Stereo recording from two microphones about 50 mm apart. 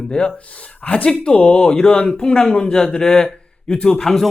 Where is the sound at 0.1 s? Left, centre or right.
Centre.